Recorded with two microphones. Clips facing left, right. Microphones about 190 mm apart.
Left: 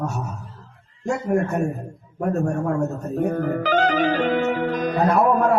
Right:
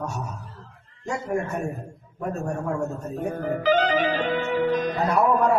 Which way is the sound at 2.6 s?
50° left (ahead or behind).